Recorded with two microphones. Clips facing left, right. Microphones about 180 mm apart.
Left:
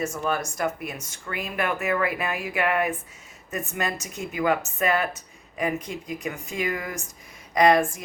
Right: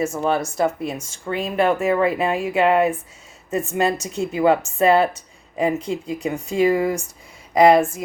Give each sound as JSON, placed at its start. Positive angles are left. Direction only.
{"t": 0.0, "sound": "speech", "side_deg": -30}
{"t": 4.0, "sound": "speech", "side_deg": -30}